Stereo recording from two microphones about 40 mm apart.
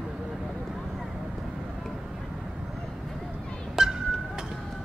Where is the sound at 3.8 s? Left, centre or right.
Centre.